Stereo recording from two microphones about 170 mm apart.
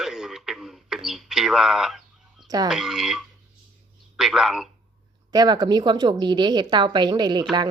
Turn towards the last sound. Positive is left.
turn(degrees=-25)  # may be behind; listen again after turning